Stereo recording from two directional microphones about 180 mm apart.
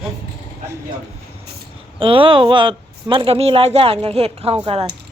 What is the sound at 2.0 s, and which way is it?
Speech, 30° right (ahead or behind).